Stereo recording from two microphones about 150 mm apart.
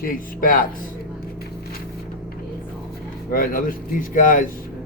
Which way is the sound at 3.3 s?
70° left (ahead or behind).